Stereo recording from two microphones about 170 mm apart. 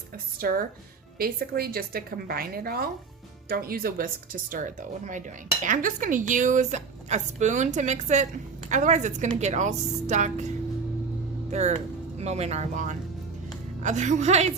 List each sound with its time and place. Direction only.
0.3 s a woman's voice: 60° right (ahead or behind)
11.5 s speech: 40° right (ahead or behind)